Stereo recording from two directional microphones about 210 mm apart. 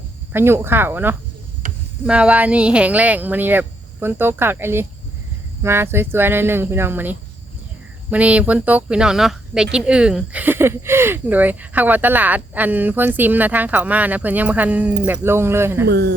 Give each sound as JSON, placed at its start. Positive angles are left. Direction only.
{"t": 0.3, "sound": "speech", "side_deg": -10}
{"t": 1.6, "sound": "a sound", "side_deg": -40}
{"t": 2.0, "sound": "speech", "side_deg": -5}
{"t": 15.9, "sound": "speech", "side_deg": -50}